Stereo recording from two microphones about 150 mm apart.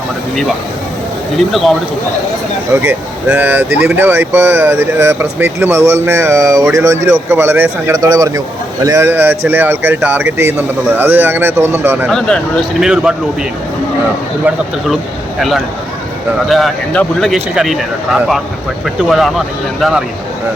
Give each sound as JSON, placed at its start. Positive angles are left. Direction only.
{"t": 1.4, "sound": "speech", "side_deg": 0}
{"t": 2.8, "sound": "speech", "side_deg": -15}
{"t": 12.0, "sound": "speech", "side_deg": 5}
{"t": 15.4, "sound": "speech", "side_deg": 0}